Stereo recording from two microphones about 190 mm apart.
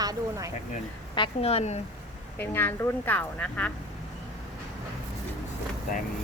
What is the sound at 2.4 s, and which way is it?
Speech, 10° left (ahead or behind).